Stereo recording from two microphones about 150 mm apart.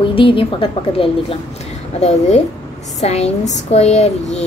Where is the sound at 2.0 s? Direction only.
50° left (ahead or behind).